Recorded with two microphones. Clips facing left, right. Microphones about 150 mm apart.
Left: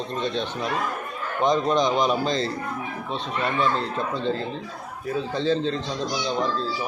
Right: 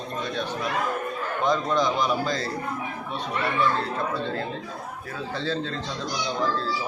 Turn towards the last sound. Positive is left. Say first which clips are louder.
# left 6 dB
turn(degrees=20)  # may be behind; listen again after turning